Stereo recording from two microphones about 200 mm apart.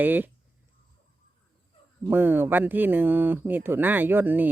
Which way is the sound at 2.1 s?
10° right (ahead or behind).